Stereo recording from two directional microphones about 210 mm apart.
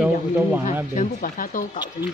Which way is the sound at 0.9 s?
40° left (ahead or behind).